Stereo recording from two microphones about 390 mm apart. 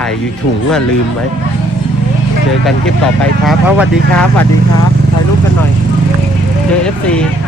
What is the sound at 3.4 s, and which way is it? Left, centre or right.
Speech, centre.